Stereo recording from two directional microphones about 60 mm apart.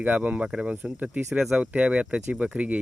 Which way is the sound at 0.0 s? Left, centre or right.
Right.